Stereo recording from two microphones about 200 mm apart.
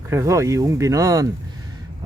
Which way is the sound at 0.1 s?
15° right (ahead or behind).